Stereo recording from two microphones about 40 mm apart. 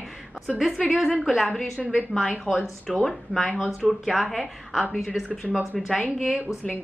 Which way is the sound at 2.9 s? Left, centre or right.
Centre.